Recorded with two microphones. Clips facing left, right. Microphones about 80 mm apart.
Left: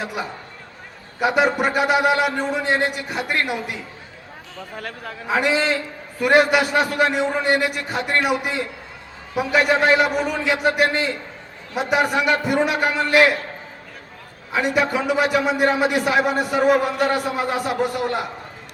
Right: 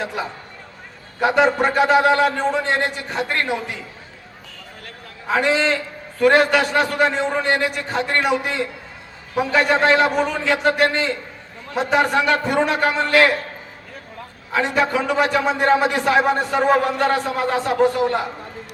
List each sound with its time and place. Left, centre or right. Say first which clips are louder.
0.0 s a man's voice: right 2 dB; centre
1.4 s a man's voice: right 3 dB; centre
5.3 s a man's voice: right 1 dB; centre
14.5 s a man's voice: right 1 dB; centre
16.1 s a man's voice: right 2 dB; right
17.1 s a man's voice: right 2 dB; centre